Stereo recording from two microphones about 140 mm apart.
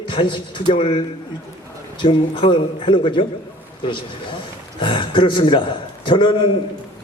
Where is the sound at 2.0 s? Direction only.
35° left (ahead or behind).